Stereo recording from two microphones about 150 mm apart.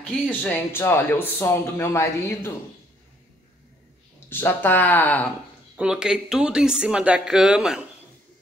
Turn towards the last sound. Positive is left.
turn(degrees=-5)  # may be behind; listen again after turning